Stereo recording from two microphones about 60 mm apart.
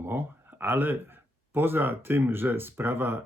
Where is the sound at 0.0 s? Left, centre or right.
Right.